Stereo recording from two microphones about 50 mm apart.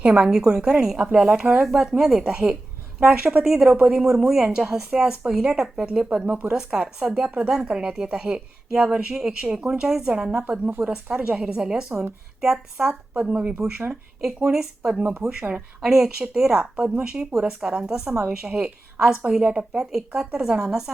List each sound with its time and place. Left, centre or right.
0.0 s a woman's voice: centre
3.4 s a woman's voice: centre
4.4 s a woman's voice: right
9.8 s a woman's voice: centre
10.3 s a woman's voice: right
11.2 s a woman's voice: centre